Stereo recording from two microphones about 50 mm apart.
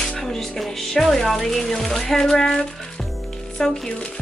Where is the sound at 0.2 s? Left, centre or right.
Centre.